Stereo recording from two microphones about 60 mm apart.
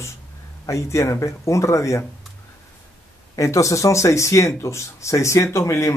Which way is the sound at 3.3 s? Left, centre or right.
Left.